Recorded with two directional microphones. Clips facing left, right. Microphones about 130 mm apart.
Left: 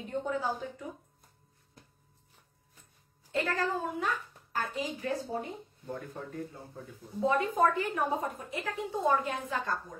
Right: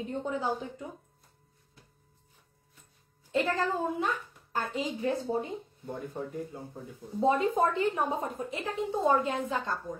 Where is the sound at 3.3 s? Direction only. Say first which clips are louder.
Right 3 dB; 20° right (ahead or behind).